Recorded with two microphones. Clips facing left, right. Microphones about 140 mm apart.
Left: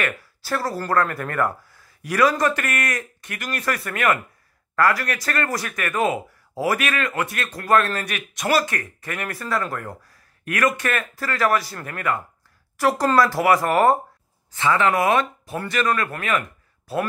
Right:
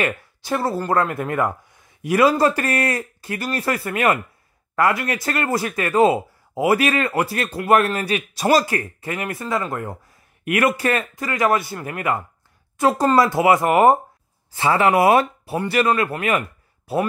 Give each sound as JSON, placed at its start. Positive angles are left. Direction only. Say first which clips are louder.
{"t": 0.4, "sound": "a man's voice", "louder": "right 3 dB", "side_deg": -20}